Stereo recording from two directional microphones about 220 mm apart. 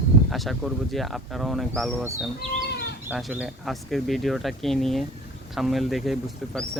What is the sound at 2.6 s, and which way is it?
Livestock, 50° left (ahead or behind).